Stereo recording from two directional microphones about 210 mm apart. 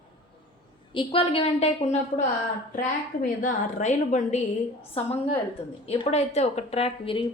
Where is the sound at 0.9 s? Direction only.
25° left (ahead or behind).